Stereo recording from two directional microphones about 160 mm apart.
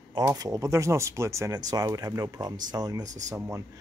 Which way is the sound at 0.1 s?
20° right (ahead or behind).